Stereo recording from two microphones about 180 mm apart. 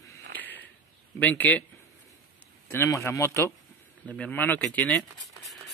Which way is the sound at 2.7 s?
15° left (ahead or behind).